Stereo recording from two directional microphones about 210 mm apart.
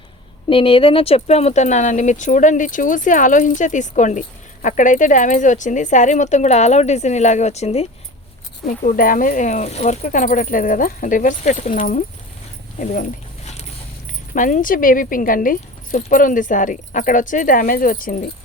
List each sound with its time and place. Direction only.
0.5 s speech: 25° left (ahead or behind)
12.8 s a sound: 35° left (ahead or behind)
14.3 s speech: 40° left (ahead or behind)